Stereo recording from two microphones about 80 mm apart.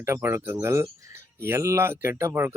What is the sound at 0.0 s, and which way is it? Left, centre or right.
A man's voice, right.